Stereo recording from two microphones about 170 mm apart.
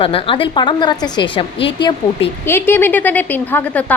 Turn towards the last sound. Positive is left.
turn(degrees=10)  # may be behind; listen again after turning